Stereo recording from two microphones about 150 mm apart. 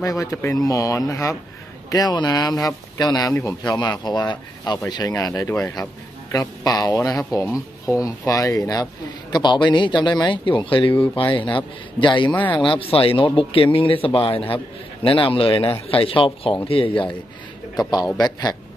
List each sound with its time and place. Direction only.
0.0 s a man's voice: 20° left (ahead or behind); by 16.9 s 40° left (ahead or behind)
17.9 s speech: 25° left (ahead or behind)